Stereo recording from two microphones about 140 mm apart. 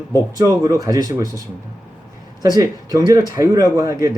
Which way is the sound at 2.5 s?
25° right (ahead or behind).